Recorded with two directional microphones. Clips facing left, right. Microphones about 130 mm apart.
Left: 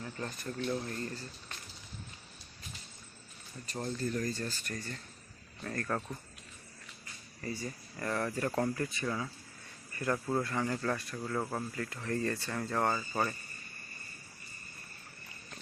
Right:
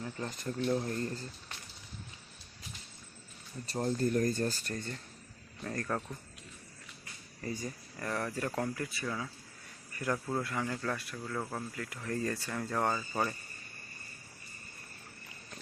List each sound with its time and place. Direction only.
0.0 s speech: 15° right (ahead or behind)
3.7 s speech: 35° right (ahead or behind)
4.6 s speech: 25° right (ahead or behind)
5.6 s speech: 15° right (ahead or behind)
7.4 s speech: 15° right (ahead or behind)
7.9 s speech: centre (ahead or behind)
10.4 s speech: centre (ahead or behind)
11.8 s speech: 5° right (ahead or behind)